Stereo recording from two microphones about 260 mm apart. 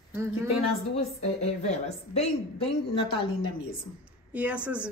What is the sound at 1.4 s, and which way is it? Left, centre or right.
A woman's voice, left.